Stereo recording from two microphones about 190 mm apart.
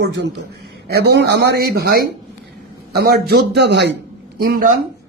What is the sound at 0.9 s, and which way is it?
Speech, 60° right (ahead or behind).